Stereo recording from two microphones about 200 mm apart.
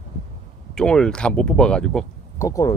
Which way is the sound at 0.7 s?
5° left (ahead or behind).